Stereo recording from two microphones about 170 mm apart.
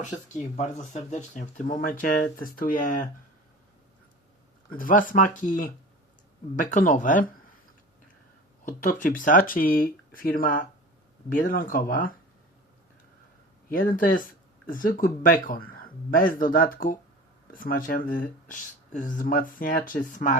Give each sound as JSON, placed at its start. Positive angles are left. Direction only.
{"t": 0.5, "sound": "speech", "side_deg": 40}
{"t": 4.8, "sound": "speech", "side_deg": 50}
{"t": 8.6, "sound": "speech", "side_deg": 50}
{"t": 13.7, "sound": "speech", "side_deg": 55}